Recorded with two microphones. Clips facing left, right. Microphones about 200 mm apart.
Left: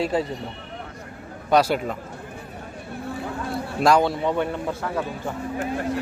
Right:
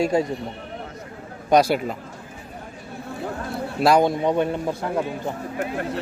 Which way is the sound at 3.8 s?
10° right (ahead or behind).